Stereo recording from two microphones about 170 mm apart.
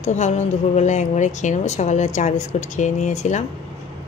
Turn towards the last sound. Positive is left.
turn(degrees=45)  # may be behind; listen again after turning